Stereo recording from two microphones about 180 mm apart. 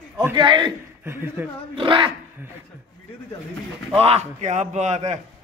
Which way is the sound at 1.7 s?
25° right (ahead or behind).